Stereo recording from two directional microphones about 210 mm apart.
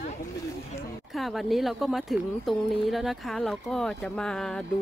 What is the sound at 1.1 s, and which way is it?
Speech, centre (ahead or behind).